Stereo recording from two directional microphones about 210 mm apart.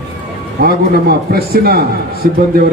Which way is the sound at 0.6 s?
45° right (ahead or behind).